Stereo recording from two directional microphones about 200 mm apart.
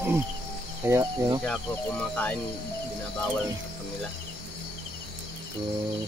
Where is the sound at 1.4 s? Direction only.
5° left (ahead or behind).